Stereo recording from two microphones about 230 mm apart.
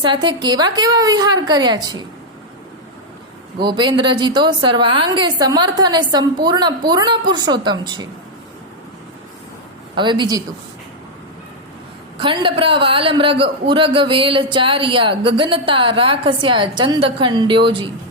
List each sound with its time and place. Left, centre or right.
0.0 s a woman's voice: centre
3.6 s a man's voice: centre
9.9 s a man's voice: centre
12.1 s a man's voice: right